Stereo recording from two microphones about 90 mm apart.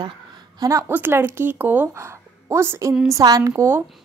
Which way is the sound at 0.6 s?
35° right (ahead or behind).